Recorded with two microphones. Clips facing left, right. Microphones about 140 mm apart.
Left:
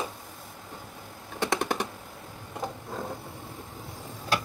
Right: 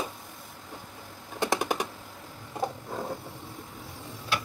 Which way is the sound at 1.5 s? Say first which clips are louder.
Even; 5° right (ahead or behind).